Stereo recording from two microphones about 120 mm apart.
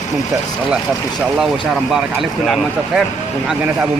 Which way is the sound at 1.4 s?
5° right (ahead or behind).